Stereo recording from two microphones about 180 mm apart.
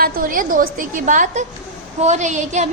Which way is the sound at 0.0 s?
50° right (ahead or behind).